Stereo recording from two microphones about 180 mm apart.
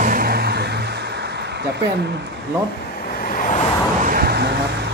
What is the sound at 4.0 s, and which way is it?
Vehicle, 50° right (ahead or behind).